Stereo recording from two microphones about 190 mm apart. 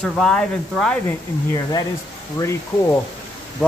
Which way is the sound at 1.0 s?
20° left (ahead or behind).